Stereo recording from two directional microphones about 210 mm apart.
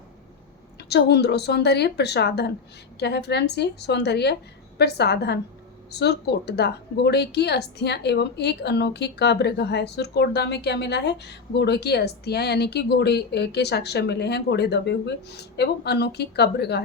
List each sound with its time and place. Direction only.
0.8 s a woman's voice: 50° left (ahead or behind)